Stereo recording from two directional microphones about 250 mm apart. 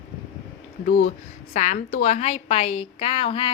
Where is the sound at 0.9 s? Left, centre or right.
Left.